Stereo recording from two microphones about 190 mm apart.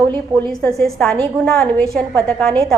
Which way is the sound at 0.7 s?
Centre (ahead or behind).